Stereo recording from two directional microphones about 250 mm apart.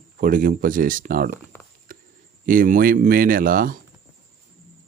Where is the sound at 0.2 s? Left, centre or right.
Right.